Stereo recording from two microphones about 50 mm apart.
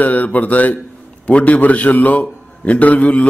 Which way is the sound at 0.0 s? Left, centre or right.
Left.